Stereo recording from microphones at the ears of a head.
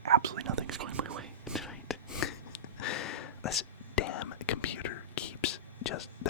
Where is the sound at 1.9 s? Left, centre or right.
Left.